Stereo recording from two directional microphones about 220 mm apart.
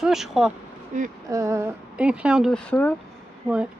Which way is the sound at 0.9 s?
35° right (ahead or behind).